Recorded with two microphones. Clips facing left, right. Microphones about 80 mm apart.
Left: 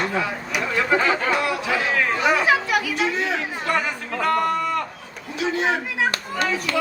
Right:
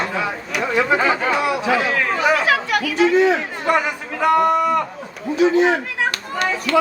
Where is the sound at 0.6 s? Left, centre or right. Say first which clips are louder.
Right 3 dB; centre.